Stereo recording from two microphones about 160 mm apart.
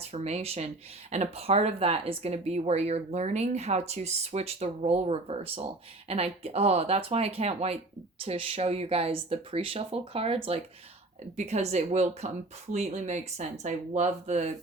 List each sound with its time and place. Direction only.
0.0 s speech: 40° right (ahead or behind)